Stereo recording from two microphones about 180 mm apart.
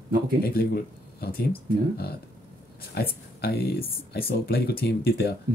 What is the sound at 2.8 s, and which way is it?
Speech, 60° left (ahead or behind).